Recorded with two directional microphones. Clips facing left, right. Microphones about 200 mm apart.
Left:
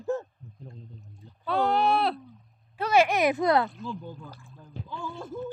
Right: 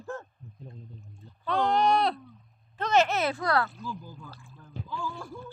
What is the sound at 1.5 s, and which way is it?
A woman's voice, 5° left (ahead or behind).